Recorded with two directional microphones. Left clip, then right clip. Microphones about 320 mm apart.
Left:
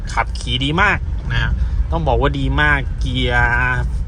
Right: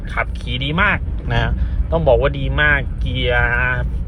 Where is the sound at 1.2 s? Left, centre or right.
Centre.